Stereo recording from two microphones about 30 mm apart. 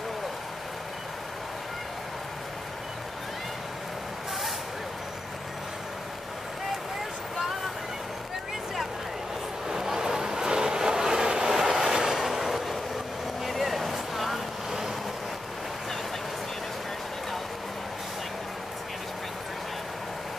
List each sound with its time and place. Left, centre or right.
9.7 s vehicle: centre